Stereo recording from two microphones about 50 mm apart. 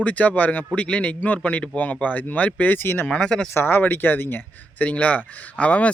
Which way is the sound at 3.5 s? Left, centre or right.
Left.